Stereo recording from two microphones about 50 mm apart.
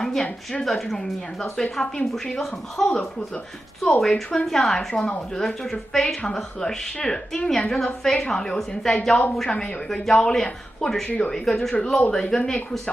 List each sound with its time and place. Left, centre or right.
0.0 s a woman's voice: centre
11.1 s speech: left
11.3 s a woman's voice: centre